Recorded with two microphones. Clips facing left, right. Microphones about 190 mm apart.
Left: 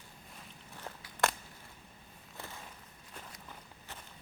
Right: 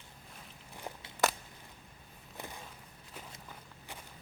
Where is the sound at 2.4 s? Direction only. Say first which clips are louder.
Right 2 dB; 15° right (ahead or behind).